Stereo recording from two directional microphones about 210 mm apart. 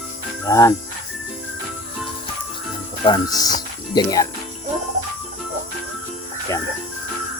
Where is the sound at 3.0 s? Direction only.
20° left (ahead or behind).